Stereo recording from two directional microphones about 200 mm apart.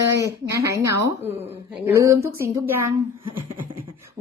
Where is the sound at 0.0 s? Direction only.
15° right (ahead or behind).